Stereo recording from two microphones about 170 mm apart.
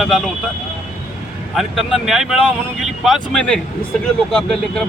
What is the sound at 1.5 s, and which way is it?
Speech, centre (ahead or behind).